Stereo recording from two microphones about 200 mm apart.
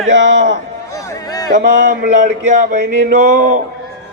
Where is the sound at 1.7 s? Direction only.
40° right (ahead or behind).